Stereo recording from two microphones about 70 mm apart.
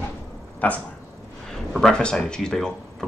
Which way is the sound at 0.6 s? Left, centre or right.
Left.